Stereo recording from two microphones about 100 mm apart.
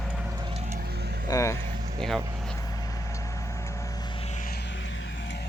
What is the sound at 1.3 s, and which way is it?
Speech, 30° left (ahead or behind).